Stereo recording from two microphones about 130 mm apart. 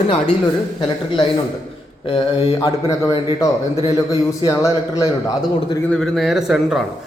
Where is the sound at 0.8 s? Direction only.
45° left (ahead or behind).